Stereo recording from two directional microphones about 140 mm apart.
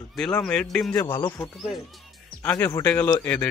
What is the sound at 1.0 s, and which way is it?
Speech, 15° left (ahead or behind).